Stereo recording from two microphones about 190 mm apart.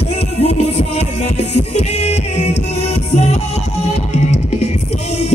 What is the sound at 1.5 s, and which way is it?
Music, 35° left (ahead or behind).